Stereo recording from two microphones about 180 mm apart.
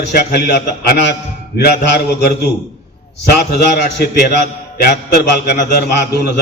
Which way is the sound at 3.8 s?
65° left (ahead or behind).